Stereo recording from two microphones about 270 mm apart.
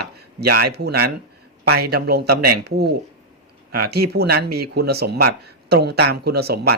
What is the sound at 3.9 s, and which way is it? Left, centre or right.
Speech, right.